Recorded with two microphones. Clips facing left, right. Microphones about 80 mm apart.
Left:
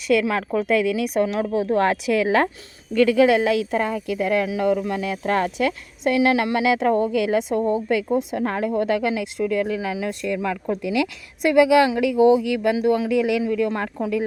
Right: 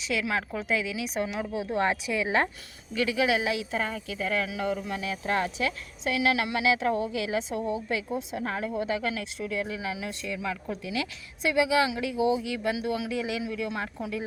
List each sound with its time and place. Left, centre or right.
0.1 s a woman's voice: left
11.9 s speech: left
12.2 s speech: left
13.5 s a woman's voice: left